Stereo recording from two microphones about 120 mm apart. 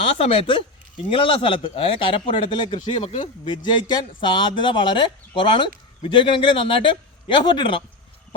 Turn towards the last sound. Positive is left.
turn(degrees=40)  # may be behind; listen again after turning